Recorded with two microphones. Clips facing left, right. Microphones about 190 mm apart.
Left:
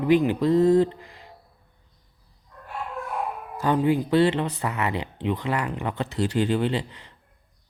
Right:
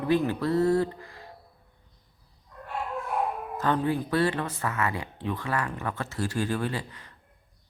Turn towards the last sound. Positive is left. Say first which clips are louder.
# left 6 dB
turn(degrees=20)  # may be behind; listen again after turning